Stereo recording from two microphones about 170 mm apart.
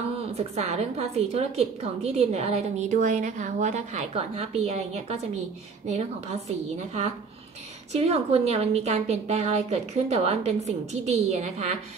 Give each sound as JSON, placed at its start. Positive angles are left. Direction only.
{"t": 0.4, "sound": "a woman's voice", "side_deg": -40}
{"t": 7.9, "sound": "a woman's voice", "side_deg": -35}